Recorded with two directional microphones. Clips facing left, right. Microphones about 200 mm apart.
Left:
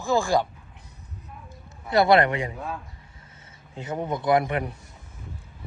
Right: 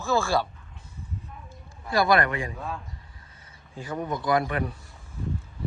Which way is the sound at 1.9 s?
25° left (ahead or behind).